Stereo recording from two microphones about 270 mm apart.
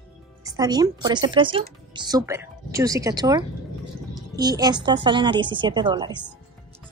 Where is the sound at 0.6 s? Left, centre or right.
Centre.